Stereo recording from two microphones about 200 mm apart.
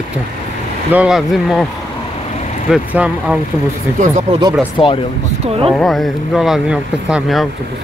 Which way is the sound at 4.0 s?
40° right (ahead or behind).